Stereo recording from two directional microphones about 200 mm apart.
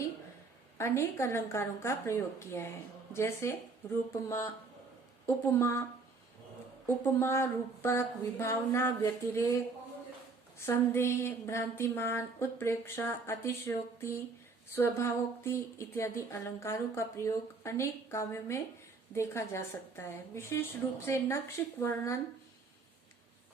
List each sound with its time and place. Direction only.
0.8 s speech: 15° left (ahead or behind)
6.8 s speech: 10° left (ahead or behind)
10.7 s speech: 10° left (ahead or behind)
14.8 s speech: 15° left (ahead or behind)